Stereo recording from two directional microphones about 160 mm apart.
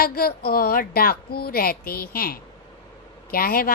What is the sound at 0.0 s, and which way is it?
A woman's voice, 70° left (ahead or behind).